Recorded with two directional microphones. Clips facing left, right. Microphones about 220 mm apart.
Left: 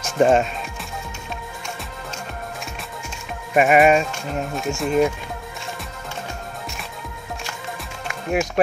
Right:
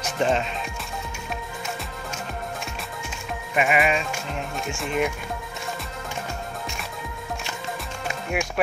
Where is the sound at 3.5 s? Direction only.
45° left (ahead or behind).